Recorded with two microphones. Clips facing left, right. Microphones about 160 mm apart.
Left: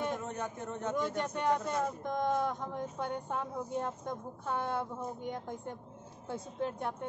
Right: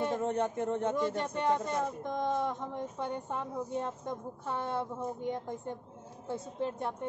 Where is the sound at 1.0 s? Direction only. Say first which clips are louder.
Right 2 dB; 30° right (ahead or behind).